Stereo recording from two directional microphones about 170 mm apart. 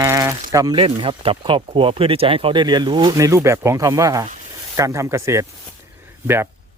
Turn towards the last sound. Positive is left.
turn(degrees=-15)  # may be behind; listen again after turning